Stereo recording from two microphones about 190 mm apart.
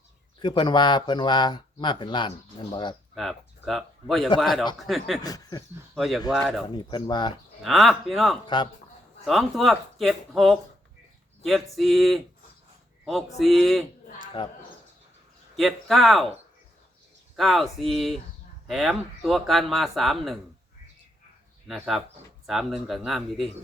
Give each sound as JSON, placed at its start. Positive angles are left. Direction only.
{"t": 0.3, "sound": "speech", "side_deg": 25}
{"t": 3.2, "sound": "speech", "side_deg": 0}
{"t": 5.2, "sound": "speech", "side_deg": 20}
{"t": 5.9, "sound": "speech", "side_deg": 0}
{"t": 6.7, "sound": "speech", "side_deg": 25}
{"t": 7.6, "sound": "speech", "side_deg": 0}
{"t": 8.4, "sound": "speech", "side_deg": 25}
{"t": 9.2, "sound": "speech", "side_deg": 0}
{"t": 14.2, "sound": "speech", "side_deg": 25}
{"t": 15.5, "sound": "speech", "side_deg": 0}
{"t": 17.3, "sound": "speech", "side_deg": 0}
{"t": 21.7, "sound": "speech", "side_deg": 0}